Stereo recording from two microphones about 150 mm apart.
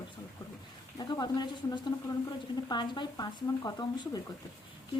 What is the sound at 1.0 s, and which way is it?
A woman's voice, 25° left (ahead or behind).